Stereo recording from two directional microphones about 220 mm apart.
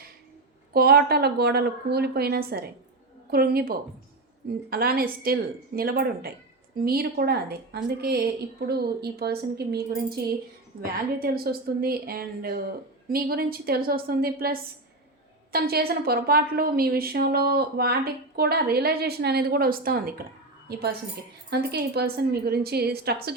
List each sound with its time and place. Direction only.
0.7 s a woman's voice: 45° right (ahead or behind)